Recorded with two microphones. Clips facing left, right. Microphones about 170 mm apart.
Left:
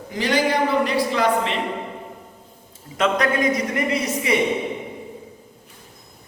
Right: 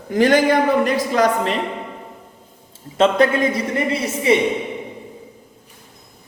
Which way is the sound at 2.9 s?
30° right (ahead or behind).